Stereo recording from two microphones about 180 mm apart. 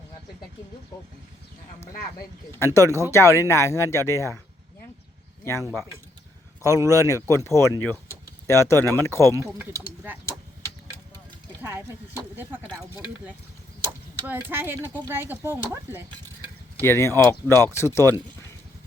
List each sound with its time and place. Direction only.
2.1 s speech: 15° left (ahead or behind)
6.6 s speech: 20° left (ahead or behind)
9.7 s speech: 10° right (ahead or behind)
14.3 s speech: 10° right (ahead or behind)
16.8 s speech: 15° left (ahead or behind)